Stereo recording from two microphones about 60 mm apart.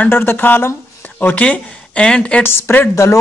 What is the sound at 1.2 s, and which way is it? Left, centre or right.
Speech, left.